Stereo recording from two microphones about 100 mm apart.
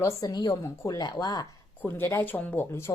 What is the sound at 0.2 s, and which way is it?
A woman's voice, 40° left (ahead or behind).